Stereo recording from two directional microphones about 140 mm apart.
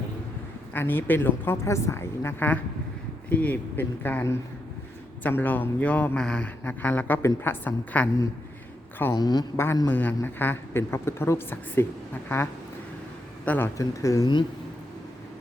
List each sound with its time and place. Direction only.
0.7 s speech: 15° left (ahead or behind)
9.1 s speech: 30° left (ahead or behind)
9.8 s speech: 10° left (ahead or behind)
13.4 s speech: 10° left (ahead or behind)
13.7 s speech: 25° left (ahead or behind)